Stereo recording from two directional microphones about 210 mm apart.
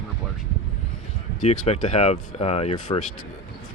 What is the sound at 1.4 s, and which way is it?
Speech, 30° left (ahead or behind).